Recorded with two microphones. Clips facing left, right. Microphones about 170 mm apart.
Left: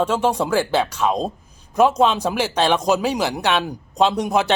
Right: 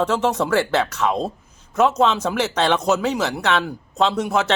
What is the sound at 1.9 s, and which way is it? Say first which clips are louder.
Speech: left 1 dB; 15° left (ahead or behind).